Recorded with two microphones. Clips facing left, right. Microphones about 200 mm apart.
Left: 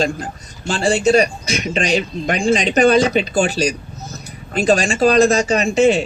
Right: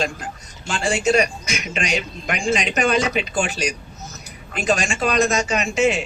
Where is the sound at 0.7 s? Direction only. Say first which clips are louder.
Left 5 dB; 35° left (ahead or behind).